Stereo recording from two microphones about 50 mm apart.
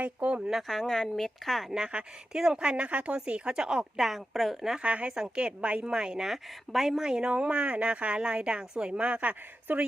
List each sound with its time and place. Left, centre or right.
0.0 s speech: right
0.5 s speech: centre
1.7 s speech: centre
3.9 s a woman's voice: centre
4.8 s speech: right
5.8 s speech: centre
9.7 s speech: right